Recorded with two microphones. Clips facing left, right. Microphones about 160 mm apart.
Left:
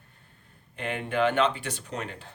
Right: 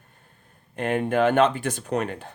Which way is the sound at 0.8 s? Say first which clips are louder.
Right 5 dB; 45° right (ahead or behind).